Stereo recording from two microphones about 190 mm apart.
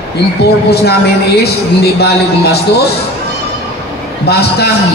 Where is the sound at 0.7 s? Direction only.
60° left (ahead or behind).